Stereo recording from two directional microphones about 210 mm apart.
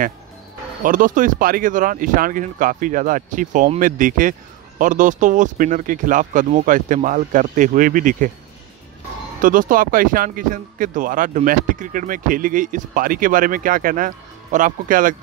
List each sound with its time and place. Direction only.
0.8 s speech: 40° right (ahead or behind)
9.4 s speech: 40° right (ahead or behind)